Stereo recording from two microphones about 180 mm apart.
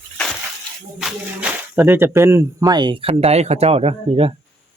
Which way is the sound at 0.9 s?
5° right (ahead or behind).